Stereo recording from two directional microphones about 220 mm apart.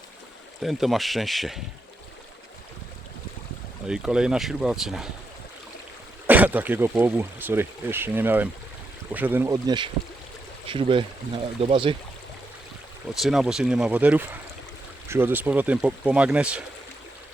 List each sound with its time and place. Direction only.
0.6 s speech: centre (ahead or behind)
3.8 s speech: 5° right (ahead or behind)
6.2 s speech: 10° right (ahead or behind); by 11.9 s 25° right (ahead or behind)
13.1 s speech: centre (ahead or behind)